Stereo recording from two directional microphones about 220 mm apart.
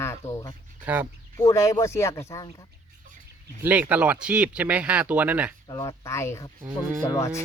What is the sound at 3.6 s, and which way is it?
Speech, 5° right (ahead or behind).